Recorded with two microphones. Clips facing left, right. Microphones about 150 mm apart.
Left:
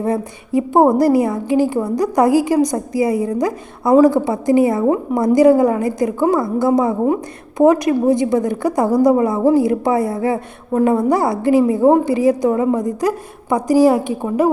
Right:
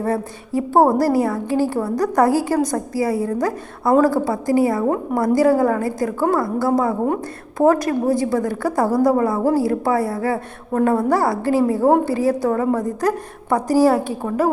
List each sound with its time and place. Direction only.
0.0 s a woman's voice: 15° left (ahead or behind)